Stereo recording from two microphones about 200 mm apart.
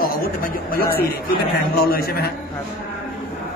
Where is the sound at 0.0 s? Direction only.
45° left (ahead or behind).